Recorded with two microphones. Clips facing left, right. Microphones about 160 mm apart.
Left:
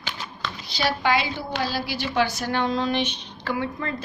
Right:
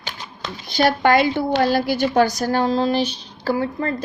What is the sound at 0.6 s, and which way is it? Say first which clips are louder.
A woman's voice: right 8 dB; 50° right (ahead or behind).